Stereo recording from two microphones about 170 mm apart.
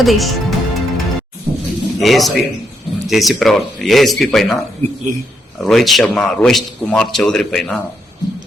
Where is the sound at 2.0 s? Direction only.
Centre (ahead or behind).